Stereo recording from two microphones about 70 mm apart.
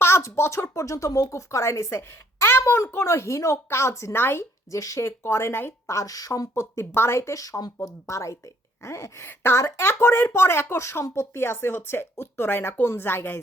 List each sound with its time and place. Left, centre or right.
0.0 s speech: left
0.7 s speech: left
4.7 s speech: left
5.9 s speech: left
6.5 s speech: left
8.0 s speech: left